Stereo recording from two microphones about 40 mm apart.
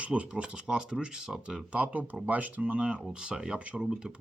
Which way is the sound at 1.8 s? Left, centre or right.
Right.